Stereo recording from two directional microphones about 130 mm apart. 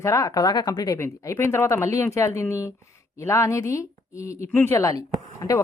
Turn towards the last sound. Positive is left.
turn(degrees=30)  # may be behind; listen again after turning